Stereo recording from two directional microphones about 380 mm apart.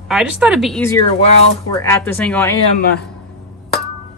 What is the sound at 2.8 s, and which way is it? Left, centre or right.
Speech, left.